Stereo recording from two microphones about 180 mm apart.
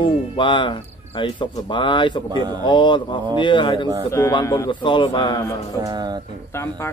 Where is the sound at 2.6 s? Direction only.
25° left (ahead or behind).